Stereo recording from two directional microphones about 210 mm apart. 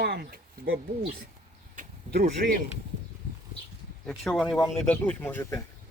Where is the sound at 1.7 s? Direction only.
45° right (ahead or behind).